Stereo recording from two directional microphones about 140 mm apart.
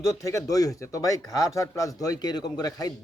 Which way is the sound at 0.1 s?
20° left (ahead or behind).